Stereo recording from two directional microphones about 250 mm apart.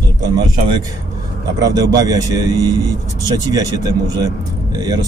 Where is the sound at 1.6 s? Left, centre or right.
Centre.